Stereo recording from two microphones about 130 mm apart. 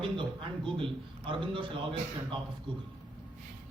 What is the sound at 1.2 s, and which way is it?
Speech, 40° right (ahead or behind).